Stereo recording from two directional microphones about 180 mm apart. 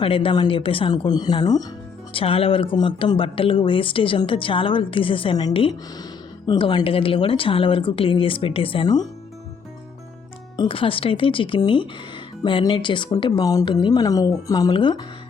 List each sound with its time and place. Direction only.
0.0 s speech: 30° left (ahead or behind)
10.6 s speech: 30° left (ahead or behind)